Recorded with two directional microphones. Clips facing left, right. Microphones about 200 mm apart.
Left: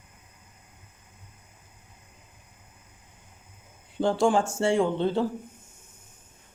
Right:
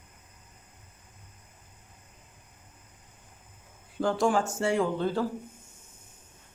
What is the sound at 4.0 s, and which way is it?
Speech, 30° left (ahead or behind).